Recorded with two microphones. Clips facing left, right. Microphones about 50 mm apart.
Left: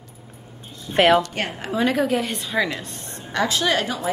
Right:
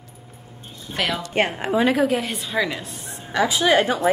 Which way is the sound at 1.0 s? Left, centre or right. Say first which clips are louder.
Left 9 dB; left.